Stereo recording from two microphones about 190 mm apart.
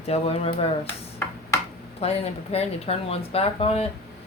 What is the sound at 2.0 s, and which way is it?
Speech, 35° left (ahead or behind).